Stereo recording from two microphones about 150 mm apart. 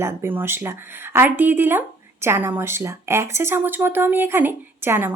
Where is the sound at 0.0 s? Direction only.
15° right (ahead or behind).